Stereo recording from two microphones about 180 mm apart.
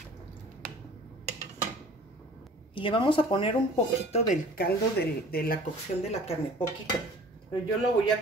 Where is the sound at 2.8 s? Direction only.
30° left (ahead or behind).